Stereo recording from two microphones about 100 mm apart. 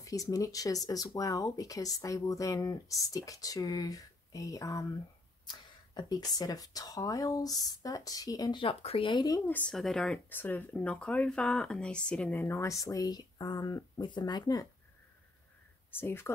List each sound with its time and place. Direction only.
0.0 s speech: 35° left (ahead or behind)
8.5 s speech: 65° left (ahead or behind)
9.7 s speech: 5° left (ahead or behind)
10.3 s speech: 20° left (ahead or behind)
12.4 s speech: 25° left (ahead or behind); by 14.7 s 40° left (ahead or behind)
15.9 s speech: 25° left (ahead or behind)